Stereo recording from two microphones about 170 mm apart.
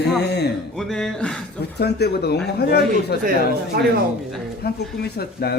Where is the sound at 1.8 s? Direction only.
70° left (ahead or behind).